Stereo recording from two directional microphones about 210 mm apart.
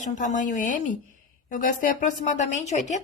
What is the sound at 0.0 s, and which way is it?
Speech, 35° left (ahead or behind).